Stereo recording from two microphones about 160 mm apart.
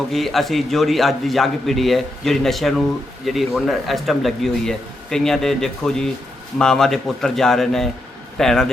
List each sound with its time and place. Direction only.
0.1 s speech: centre (ahead or behind)